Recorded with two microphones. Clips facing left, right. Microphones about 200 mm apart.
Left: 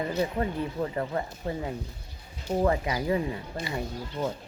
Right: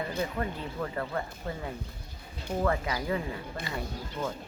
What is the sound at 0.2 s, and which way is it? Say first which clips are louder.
Speech: left 6 dB; 20° left (ahead or behind).